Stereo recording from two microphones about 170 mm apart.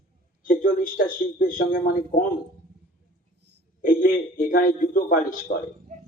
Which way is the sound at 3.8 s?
55° left (ahead or behind).